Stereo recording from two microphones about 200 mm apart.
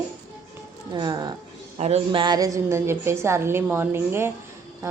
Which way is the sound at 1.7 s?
35° right (ahead or behind).